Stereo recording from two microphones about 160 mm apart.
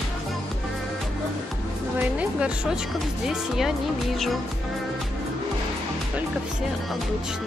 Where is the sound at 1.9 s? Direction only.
5° right (ahead or behind).